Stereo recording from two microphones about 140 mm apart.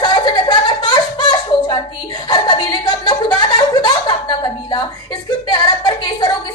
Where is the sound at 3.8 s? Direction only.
30° left (ahead or behind).